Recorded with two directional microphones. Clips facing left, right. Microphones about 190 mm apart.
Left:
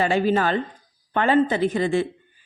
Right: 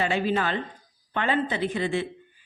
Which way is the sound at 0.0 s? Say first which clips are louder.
Left 5 dB; 40° left (ahead or behind).